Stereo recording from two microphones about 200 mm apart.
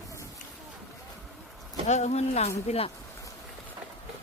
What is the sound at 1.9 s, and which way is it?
Speech, 35° left (ahead or behind).